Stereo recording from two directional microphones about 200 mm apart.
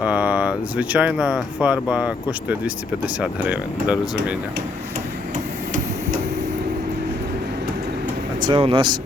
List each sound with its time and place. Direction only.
0.0 s speech: 5° right (ahead or behind)
8.4 s speech: 25° right (ahead or behind)